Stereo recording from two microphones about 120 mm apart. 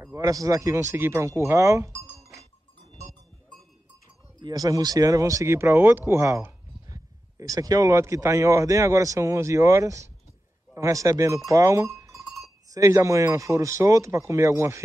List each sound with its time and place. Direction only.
0.0 s speech: 25° right (ahead or behind)
4.4 s speech: 35° right (ahead or behind)